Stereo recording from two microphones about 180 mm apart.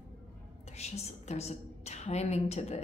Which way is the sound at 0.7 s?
35° left (ahead or behind).